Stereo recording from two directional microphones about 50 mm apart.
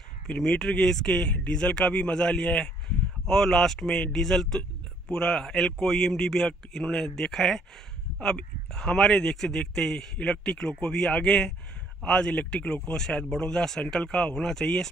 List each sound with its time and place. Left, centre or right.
0.4 s a man's voice: centre
1.3 s speech: left
1.6 s a man's voice: centre